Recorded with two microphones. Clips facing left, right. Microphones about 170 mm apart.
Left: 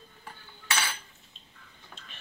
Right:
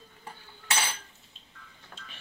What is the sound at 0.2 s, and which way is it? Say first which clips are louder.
Cutlery: right 2 dB; 25° right (ahead or behind).